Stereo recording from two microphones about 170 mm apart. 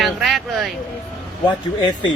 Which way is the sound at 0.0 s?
Centre (ahead or behind).